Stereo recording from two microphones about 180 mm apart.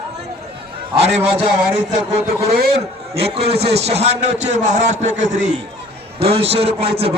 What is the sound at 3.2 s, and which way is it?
A man's voice, 35° right (ahead or behind).